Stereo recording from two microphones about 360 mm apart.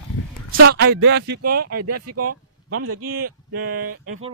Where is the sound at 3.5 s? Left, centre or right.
Right.